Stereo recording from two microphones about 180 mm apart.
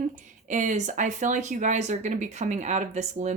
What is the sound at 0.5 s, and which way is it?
Speech, 45° right (ahead or behind).